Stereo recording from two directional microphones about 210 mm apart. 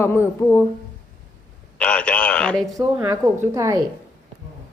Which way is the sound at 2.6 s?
15° right (ahead or behind).